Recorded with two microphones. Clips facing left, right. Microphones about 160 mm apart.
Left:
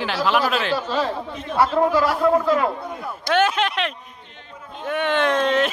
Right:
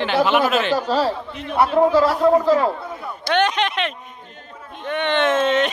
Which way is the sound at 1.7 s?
25° right (ahead or behind).